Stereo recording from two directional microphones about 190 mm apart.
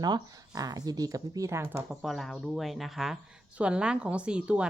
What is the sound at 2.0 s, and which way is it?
A woman's voice, centre (ahead or behind).